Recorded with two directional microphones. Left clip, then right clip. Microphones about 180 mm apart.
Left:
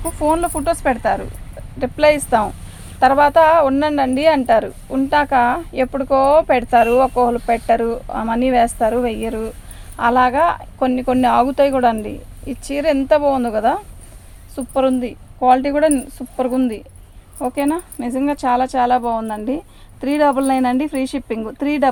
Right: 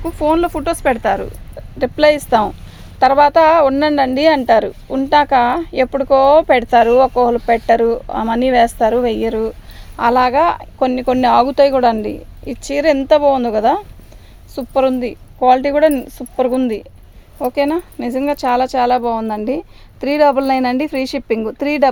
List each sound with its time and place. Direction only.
0.0 s a woman's voice: 50° right (ahead or behind)